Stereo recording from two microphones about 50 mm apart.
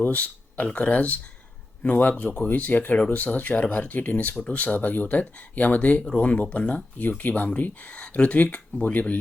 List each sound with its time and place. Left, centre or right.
0.0 s speech: left